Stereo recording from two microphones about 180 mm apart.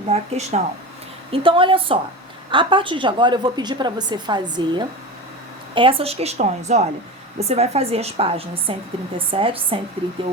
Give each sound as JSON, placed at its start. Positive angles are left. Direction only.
{"t": 0.1, "sound": "a woman's voice", "side_deg": -35}